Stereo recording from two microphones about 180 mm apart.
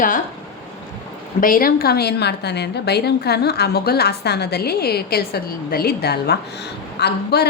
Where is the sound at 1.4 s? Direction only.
50° left (ahead or behind).